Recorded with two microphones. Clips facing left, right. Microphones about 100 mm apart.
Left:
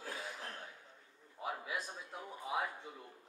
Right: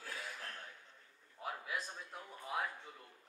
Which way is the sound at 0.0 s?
20° left (ahead or behind).